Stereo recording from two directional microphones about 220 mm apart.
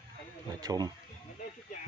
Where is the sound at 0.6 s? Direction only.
15° right (ahead or behind).